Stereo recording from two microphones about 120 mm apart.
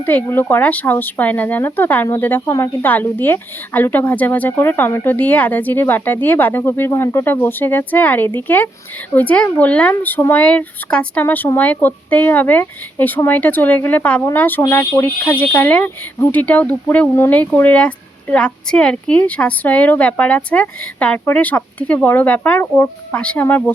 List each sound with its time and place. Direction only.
0.0 s speech: 15° left (ahead or behind)